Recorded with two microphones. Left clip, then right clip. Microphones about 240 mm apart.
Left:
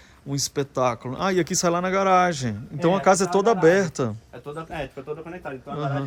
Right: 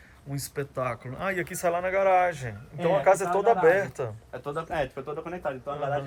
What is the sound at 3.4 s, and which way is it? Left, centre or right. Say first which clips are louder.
Speech: left 3 dB; left.